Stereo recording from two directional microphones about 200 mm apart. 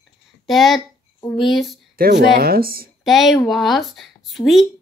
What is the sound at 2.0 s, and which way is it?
Speech, 50° right (ahead or behind).